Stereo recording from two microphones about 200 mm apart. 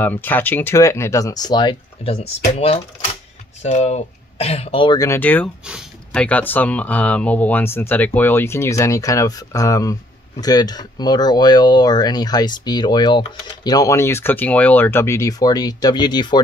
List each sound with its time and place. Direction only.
0.0 s speech: 10° left (ahead or behind)